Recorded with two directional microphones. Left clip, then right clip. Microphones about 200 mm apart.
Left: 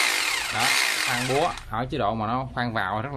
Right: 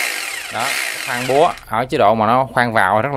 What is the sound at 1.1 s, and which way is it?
Speech, 50° right (ahead or behind).